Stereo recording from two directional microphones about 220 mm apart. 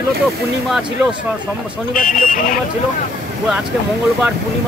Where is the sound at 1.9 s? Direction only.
40° left (ahead or behind).